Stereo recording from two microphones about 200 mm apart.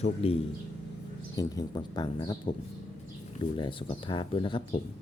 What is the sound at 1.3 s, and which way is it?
Speech, 20° left (ahead or behind).